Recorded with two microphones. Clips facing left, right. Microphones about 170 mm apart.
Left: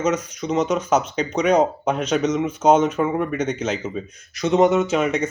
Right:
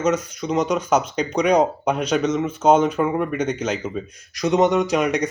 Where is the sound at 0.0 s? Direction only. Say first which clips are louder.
Right 1 dB; 10° right (ahead or behind).